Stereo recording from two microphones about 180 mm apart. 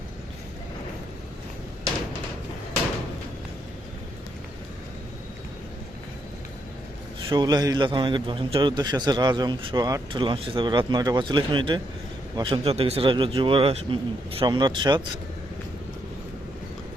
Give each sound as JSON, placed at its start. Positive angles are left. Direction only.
{"t": 7.3, "sound": "a man's voice", "side_deg": -25}